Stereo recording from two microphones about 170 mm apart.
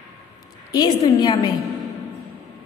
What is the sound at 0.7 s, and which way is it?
Speech, 20° left (ahead or behind).